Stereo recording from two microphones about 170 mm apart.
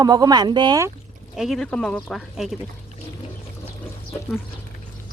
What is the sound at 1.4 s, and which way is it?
Speech, centre (ahead or behind).